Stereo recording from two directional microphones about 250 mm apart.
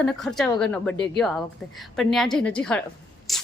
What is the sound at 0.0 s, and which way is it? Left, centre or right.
A woman's voice, centre.